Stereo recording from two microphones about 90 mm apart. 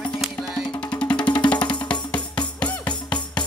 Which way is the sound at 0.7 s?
15° left (ahead or behind).